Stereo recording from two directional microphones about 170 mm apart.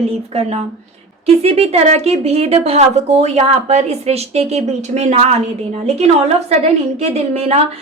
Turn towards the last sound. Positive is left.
turn(degrees=-40)  # may be behind; listen again after turning